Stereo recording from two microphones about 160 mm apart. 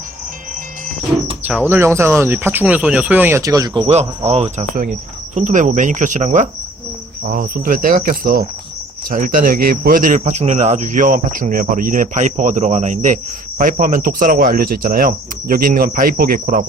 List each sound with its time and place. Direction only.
1.5 s speech: 10° right (ahead or behind)
4.3 s speech: 40° right (ahead or behind)
4.7 s speech: 55° right (ahead or behind)
7.3 s speech: 60° right (ahead or behind)